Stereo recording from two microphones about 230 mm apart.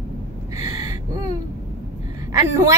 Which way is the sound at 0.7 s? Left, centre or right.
Centre.